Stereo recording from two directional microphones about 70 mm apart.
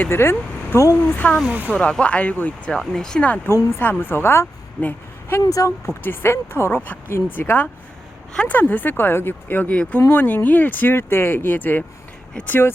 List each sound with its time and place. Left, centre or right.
0.0 s speech: left
1.1 s speech: left
1.5 s speech: right
1.7 s speech: centre
2.6 s speech: centre
3.2 s speech: left
3.5 s speech: left
5.4 s speech: left
5.8 s speech: left